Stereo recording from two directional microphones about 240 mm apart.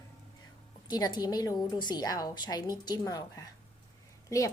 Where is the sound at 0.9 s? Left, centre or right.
Centre.